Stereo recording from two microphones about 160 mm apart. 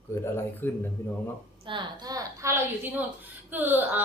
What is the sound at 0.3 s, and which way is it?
Speech, 10° left (ahead or behind).